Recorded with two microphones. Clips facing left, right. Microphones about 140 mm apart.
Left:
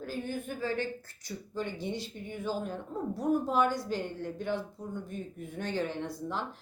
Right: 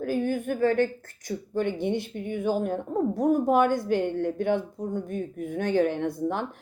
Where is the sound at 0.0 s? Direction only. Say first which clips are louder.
Right 10 dB; 50° right (ahead or behind).